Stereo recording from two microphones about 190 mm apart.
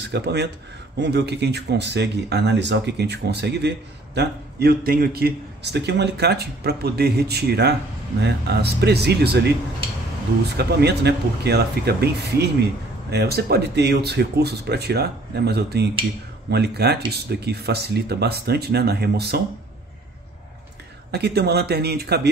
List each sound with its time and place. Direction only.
0.0 s speech: 60° right (ahead or behind)
10.6 s speech: 60° right (ahead or behind)
21.1 s speech: 60° right (ahead or behind)